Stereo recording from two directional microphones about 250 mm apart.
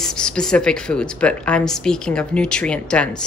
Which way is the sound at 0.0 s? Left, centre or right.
Centre.